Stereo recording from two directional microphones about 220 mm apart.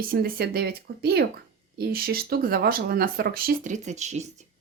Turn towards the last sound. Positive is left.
turn(degrees=-30)  # may be behind; listen again after turning